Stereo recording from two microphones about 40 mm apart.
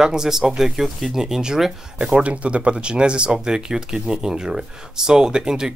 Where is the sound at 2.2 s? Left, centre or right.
Right.